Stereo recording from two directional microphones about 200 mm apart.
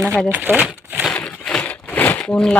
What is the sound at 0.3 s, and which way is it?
Speech, 10° right (ahead or behind).